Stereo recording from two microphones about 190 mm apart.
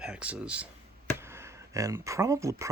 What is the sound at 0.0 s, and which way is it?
Speech, 5° right (ahead or behind).